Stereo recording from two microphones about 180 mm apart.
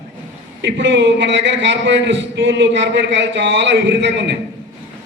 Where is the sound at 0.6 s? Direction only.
80° right.